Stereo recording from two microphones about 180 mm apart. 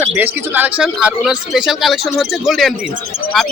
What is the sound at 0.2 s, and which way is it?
Speech, 10° right (ahead or behind).